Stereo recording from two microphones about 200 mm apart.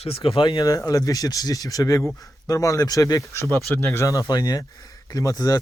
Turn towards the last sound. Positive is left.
turn(degrees=20)  # may be behind; listen again after turning